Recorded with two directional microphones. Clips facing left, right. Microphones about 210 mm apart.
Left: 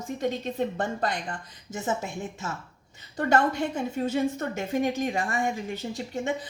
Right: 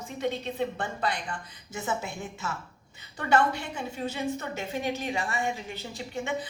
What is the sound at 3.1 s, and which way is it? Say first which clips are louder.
A woman's voice: left 2 dB; 45° left (ahead or behind).